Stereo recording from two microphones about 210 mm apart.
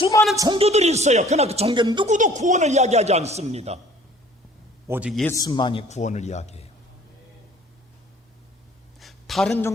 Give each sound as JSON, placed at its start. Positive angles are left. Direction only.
{"t": 0.0, "sound": "a man's voice", "side_deg": 15}
{"t": 0.3, "sound": "speech", "side_deg": -20}
{"t": 2.0, "sound": "a man's voice", "side_deg": -35}
{"t": 4.9, "sound": "a man's voice", "side_deg": -5}
{"t": 5.2, "sound": "a man's voice", "side_deg": 15}
{"t": 9.0, "sound": "a sound", "side_deg": 0}